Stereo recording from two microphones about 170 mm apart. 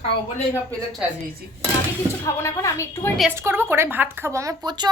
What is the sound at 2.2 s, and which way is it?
Speech, 15° left (ahead or behind).